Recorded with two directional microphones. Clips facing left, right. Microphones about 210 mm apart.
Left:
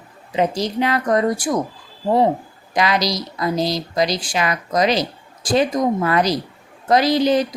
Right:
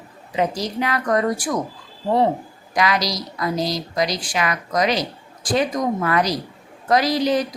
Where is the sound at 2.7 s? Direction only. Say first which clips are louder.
Left 2 dB; 25° left (ahead or behind).